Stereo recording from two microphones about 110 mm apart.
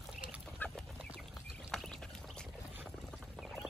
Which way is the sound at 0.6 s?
15° left (ahead or behind).